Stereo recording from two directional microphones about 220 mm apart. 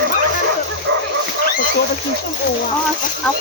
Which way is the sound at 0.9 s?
55° right (ahead or behind).